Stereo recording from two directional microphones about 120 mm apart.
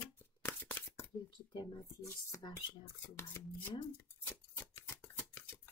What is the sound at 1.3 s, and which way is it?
Speech, 35° left (ahead or behind).